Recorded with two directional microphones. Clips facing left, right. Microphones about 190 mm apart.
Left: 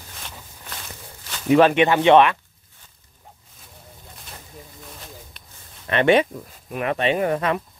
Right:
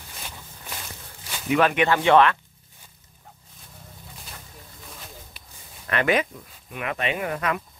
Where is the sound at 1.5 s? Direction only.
30° left (ahead or behind).